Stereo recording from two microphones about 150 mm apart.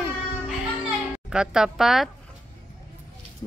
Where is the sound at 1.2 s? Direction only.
5° right (ahead or behind).